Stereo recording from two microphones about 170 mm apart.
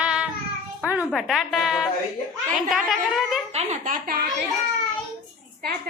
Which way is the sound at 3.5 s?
40° right (ahead or behind).